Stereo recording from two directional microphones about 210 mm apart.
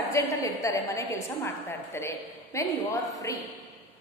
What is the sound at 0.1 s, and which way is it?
A woman's voice, 15° left (ahead or behind).